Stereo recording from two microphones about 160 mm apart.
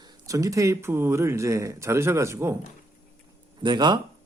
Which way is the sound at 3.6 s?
30° right (ahead or behind).